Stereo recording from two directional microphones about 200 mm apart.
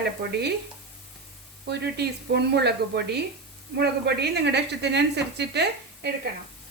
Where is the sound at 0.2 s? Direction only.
55° right (ahead or behind).